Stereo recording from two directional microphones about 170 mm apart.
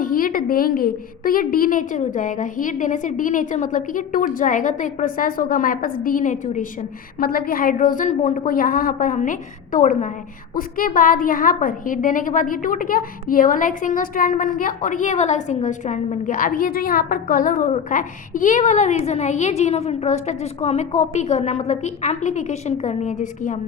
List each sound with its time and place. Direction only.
0.0 s a woman's voice: 55° left (ahead or behind)